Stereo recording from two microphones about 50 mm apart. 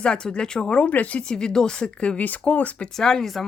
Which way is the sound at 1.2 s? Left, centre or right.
Centre.